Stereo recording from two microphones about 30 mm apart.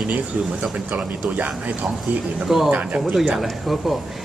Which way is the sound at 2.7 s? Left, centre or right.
Right.